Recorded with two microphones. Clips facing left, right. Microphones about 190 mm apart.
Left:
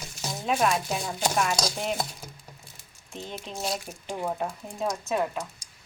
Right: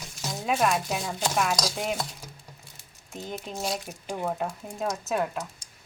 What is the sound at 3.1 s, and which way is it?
Speech, 5° right (ahead or behind).